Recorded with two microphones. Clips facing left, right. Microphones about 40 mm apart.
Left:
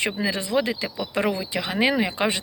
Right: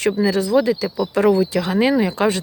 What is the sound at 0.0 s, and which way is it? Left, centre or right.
Speech, left.